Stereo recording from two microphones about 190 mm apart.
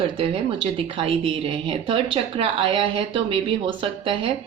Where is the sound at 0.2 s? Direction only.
30° right (ahead or behind).